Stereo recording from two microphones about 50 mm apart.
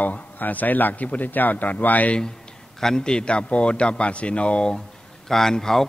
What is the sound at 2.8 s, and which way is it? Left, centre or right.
A man's voice, centre.